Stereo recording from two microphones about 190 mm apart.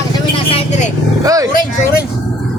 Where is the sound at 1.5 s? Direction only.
45° left (ahead or behind).